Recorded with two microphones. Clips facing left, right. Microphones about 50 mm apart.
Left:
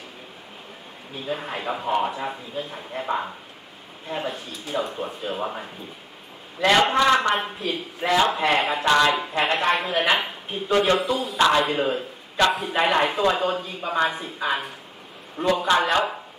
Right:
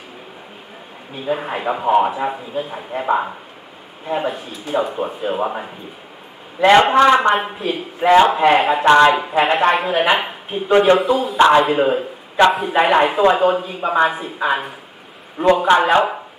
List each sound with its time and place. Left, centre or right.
1.1 s a man's voice: centre
7.3 s speech: centre
8.8 s a man's voice: right
9.1 s speech: centre
9.8 s a man's voice: centre; by 11.0 s right
11.0 s speech: centre
11.3 s a man's voice: right
11.6 s a man's voice: centre
15.9 s a man's voice: right